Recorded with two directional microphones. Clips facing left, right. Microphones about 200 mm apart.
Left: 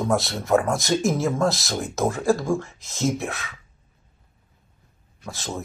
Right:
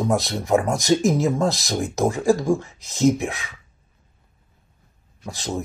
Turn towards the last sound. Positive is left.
turn(degrees=-15)  # may be behind; listen again after turning